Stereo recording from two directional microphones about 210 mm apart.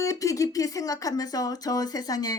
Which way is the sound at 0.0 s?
15° left (ahead or behind).